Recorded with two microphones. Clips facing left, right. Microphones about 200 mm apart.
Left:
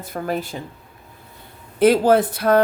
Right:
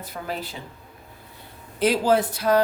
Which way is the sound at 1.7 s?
55° left (ahead or behind).